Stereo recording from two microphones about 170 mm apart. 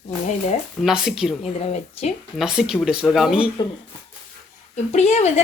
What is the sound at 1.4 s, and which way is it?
Speech, 40° left (ahead or behind).